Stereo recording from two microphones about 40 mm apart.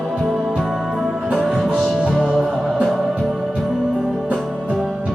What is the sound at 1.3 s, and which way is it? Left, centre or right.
Music, centre.